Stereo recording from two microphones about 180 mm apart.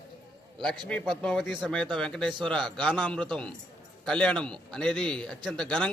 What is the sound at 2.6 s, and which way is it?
Speech, 25° right (ahead or behind).